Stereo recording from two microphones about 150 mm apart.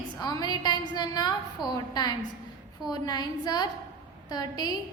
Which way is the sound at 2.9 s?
25° left (ahead or behind).